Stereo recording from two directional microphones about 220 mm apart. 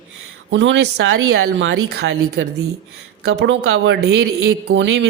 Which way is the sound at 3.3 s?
55° right (ahead or behind).